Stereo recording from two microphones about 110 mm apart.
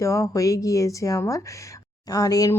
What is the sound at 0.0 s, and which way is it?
Speech, 30° left (ahead or behind).